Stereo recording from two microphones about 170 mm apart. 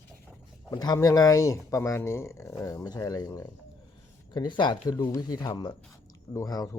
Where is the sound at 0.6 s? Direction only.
25° left (ahead or behind).